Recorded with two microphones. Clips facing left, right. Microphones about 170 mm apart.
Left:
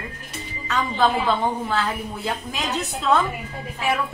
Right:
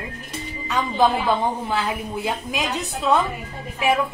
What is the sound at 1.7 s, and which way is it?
Speech, 15° right (ahead or behind).